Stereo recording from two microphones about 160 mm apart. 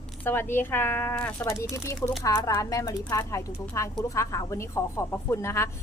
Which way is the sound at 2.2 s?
20° left (ahead or behind).